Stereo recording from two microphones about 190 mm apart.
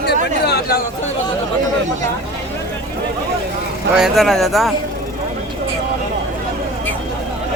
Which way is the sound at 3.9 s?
Centre (ahead or behind).